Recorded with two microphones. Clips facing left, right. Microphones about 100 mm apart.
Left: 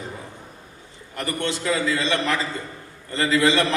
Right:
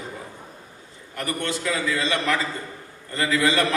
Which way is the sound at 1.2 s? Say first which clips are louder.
Left 1 dB; 25° left (ahead or behind).